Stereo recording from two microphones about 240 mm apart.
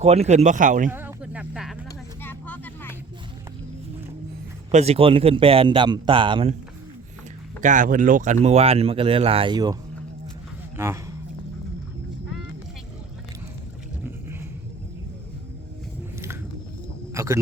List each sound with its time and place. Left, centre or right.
0.0 s speech: right
0.9 s a sound: centre
2.2 s vehicle: centre
4.7 s speech: right
7.6 s speech: right; by 9.7 s centre
10.8 s speech: centre
17.2 s a sound: centre